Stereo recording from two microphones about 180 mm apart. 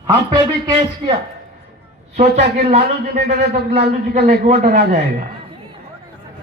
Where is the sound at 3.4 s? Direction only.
65° right (ahead or behind).